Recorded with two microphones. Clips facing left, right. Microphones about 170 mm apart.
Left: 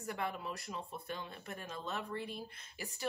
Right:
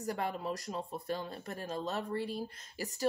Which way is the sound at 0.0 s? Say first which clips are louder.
Right 4 dB; 35° right (ahead or behind).